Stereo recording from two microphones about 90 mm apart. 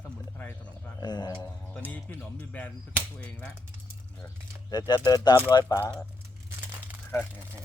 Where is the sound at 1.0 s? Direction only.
50° left (ahead or behind).